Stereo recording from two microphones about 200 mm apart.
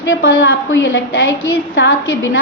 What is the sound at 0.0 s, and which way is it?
A woman's voice, 70° left (ahead or behind).